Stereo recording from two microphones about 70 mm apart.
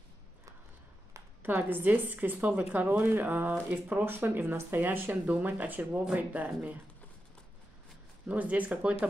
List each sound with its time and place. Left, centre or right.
1.4 s speech: right
8.3 s speech: right